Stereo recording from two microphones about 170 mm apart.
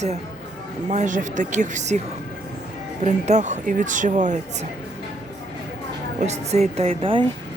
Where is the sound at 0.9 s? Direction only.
45° right (ahead or behind).